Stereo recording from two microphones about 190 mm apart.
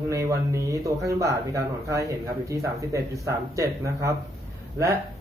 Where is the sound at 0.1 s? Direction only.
15° right (ahead or behind).